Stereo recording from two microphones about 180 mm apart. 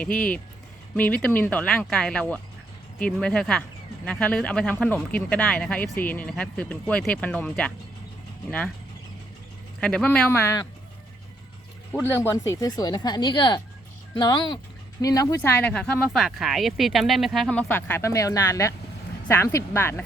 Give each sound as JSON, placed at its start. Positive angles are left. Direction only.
{"t": 0.0, "sound": "speech", "side_deg": 5}
{"t": 9.8, "sound": "speech", "side_deg": 5}
{"t": 11.9, "sound": "speech", "side_deg": 10}
{"t": 15.4, "sound": "speech", "side_deg": 10}